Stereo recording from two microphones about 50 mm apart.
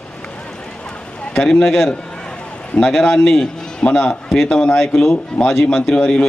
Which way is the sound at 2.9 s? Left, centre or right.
Centre.